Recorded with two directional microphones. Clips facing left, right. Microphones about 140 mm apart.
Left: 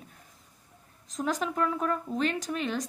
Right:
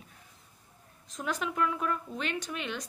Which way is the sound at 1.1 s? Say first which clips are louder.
Left 4 dB; 35° left (ahead or behind).